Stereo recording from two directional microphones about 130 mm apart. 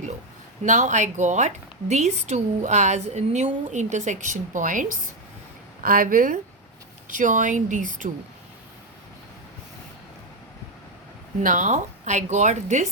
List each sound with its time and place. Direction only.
0.6 s a woman's voice: 75° right (ahead or behind)
11.4 s a woman's voice: 75° right (ahead or behind)